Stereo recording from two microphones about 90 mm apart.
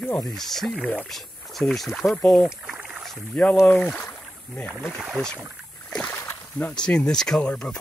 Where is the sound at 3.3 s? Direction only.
15° left (ahead or behind).